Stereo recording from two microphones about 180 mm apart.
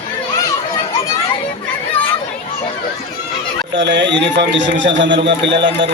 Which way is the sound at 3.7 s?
85° right.